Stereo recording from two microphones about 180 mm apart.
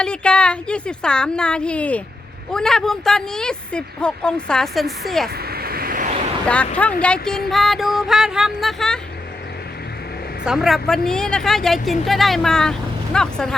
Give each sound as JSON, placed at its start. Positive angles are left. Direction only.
{"t": 0.0, "sound": "speech", "side_deg": 5}
{"t": 5.4, "sound": "vehicle", "side_deg": -60}
{"t": 6.4, "sound": "speech", "side_deg": 5}
{"t": 10.4, "sound": "speech", "side_deg": -5}